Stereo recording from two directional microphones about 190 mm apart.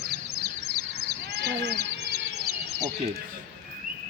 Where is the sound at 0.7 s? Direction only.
55° right (ahead or behind).